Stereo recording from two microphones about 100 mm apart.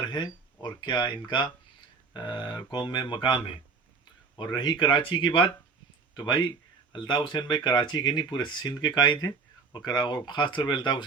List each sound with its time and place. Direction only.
0.1 s a sound: 45° left (ahead or behind)
0.8 s speech: 50° left (ahead or behind)
6.1 s speech: 45° left (ahead or behind)